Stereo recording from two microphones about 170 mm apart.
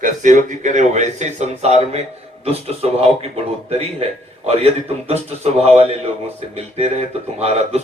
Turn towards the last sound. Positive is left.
turn(degrees=-40)  # may be behind; listen again after turning